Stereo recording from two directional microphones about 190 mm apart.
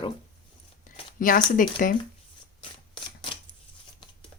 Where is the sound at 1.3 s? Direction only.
45° left (ahead or behind).